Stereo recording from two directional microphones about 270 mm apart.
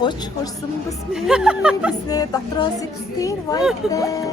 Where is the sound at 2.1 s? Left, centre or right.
Centre.